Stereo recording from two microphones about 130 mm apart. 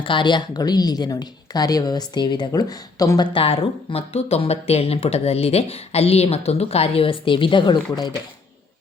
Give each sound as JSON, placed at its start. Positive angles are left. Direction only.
{"t": 0.0, "sound": "a woman's voice", "side_deg": 40}
{"t": 3.3, "sound": "speech", "side_deg": 45}